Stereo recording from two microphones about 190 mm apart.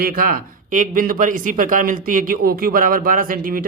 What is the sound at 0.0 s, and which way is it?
A man's voice, 50° right (ahead or behind).